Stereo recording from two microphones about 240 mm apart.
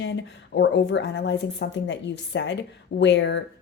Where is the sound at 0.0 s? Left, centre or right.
Left.